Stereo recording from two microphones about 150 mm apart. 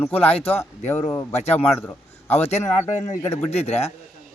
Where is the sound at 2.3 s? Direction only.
45° left (ahead or behind).